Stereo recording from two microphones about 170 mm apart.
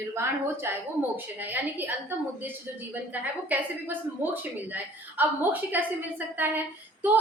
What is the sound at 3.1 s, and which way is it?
A woman's voice, 10° right (ahead or behind).